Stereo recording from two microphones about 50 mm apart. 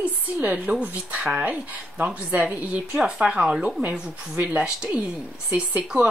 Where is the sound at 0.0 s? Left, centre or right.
Right.